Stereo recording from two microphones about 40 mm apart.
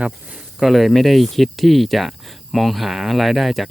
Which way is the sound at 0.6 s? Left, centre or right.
Centre.